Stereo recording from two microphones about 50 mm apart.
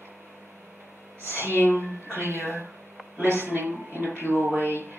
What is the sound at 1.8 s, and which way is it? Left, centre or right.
Speech, right.